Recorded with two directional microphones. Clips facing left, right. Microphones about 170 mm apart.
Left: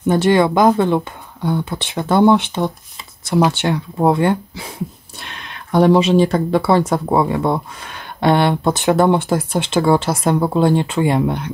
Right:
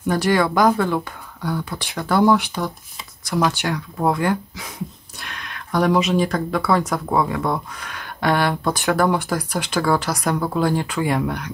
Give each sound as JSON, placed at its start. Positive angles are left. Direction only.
{"t": 0.0, "sound": "speech", "side_deg": 25}